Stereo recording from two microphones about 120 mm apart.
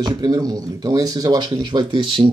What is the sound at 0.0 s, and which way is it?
Speech, 30° right (ahead or behind).